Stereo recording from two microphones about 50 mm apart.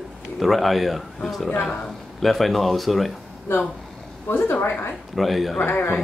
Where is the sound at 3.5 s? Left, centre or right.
Left.